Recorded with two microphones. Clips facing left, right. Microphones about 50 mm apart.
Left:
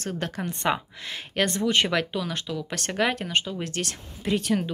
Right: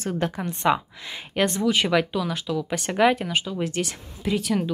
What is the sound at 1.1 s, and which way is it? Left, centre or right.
A woman's voice, centre.